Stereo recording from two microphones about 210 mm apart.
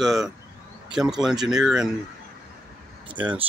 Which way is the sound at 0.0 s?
Centre (ahead or behind).